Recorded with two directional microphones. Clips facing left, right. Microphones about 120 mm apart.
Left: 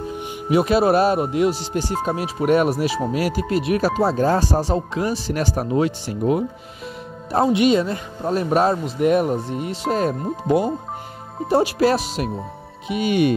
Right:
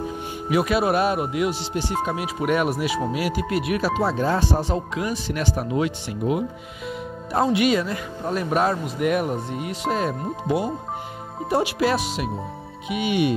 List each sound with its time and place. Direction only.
0.5 s speech: 30° left (ahead or behind)
7.5 s speech: 25° left (ahead or behind); by 13.3 s 45° left (ahead or behind)